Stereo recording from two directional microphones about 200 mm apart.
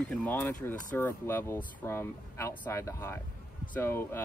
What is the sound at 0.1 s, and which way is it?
Speech, 5° left (ahead or behind).